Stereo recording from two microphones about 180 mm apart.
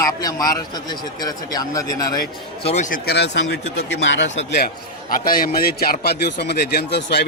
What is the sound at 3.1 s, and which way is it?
A man's voice, 70° left (ahead or behind).